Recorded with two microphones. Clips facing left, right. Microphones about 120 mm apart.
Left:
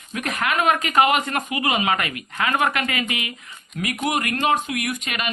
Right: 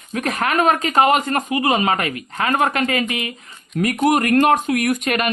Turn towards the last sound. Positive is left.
turn(degrees=-50)  # may be behind; listen again after turning